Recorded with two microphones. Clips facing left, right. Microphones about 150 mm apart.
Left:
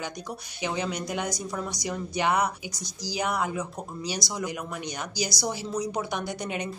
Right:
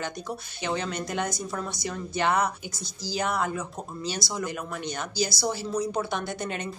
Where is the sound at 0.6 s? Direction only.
10° left (ahead or behind).